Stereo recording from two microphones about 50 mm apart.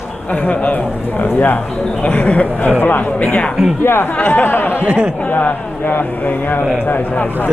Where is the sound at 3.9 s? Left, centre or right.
Left.